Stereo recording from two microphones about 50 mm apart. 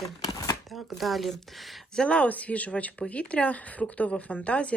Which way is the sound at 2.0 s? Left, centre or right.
Left.